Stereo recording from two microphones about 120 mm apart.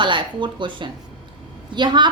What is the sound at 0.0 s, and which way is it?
A woman's voice, 40° right (ahead or behind).